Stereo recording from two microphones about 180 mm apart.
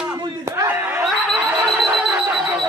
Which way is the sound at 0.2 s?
15° right (ahead or behind).